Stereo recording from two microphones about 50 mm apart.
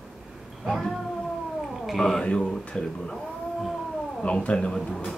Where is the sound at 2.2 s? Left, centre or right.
Centre.